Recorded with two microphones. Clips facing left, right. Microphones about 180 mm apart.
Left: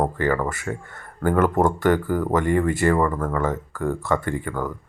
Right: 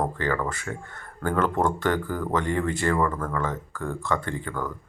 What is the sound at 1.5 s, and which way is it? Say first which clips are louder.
Speech: left 5 dB; 45° left (ahead or behind).